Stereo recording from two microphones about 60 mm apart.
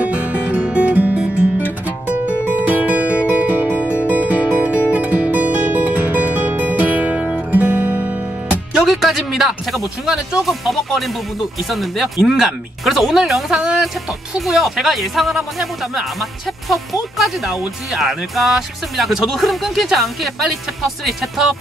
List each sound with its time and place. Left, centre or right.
0.0 s music: right
1.2 s guitar: right
2.5 s music: right
8.8 s speech: centre
10.4 s speech: centre